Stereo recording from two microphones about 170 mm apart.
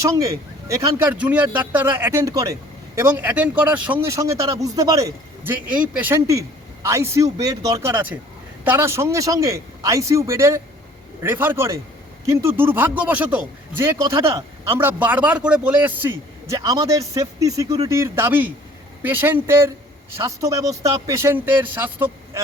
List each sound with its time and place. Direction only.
0.7 s speech: 10° right (ahead or behind)